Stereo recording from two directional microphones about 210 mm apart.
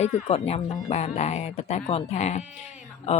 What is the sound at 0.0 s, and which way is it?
A woman's voice, 30° left (ahead or behind).